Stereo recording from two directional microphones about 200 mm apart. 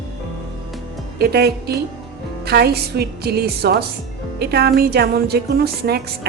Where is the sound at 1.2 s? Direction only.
50° right (ahead or behind).